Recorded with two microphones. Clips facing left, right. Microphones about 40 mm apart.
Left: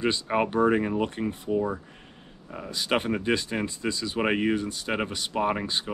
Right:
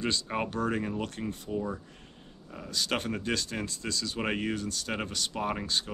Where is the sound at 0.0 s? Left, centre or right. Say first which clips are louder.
Left 6 dB; left.